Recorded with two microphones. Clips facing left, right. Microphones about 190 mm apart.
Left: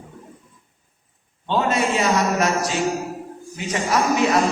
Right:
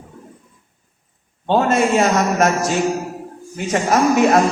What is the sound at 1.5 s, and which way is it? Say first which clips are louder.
A man's voice: right 5 dB; 50° right (ahead or behind).